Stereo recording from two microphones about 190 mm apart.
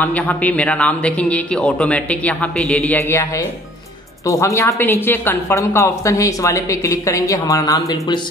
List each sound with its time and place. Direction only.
0.0 s a woman's voice: 10° left (ahead or behind)